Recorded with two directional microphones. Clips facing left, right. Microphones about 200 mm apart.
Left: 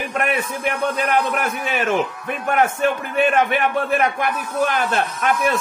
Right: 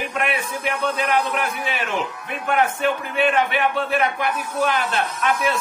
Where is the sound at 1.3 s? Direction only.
45° left (ahead or behind).